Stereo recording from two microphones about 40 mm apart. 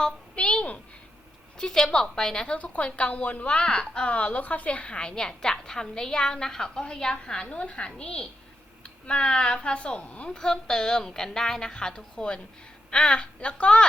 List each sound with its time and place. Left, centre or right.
0.3 s a sound: left
1.5 s a woman's voice: centre
2.6 s a woman's voice: left
3.4 s a woman's voice: left
4.1 s a woman's voice: left